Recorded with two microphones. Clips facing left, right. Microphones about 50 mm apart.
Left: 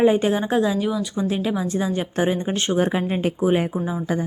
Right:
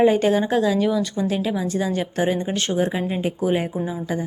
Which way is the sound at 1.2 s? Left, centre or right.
Left.